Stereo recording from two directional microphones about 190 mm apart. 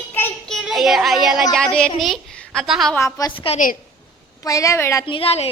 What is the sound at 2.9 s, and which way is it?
Speech, 15° left (ahead or behind).